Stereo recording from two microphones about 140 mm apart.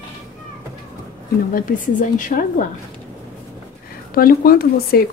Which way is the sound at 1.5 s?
75° left (ahead or behind).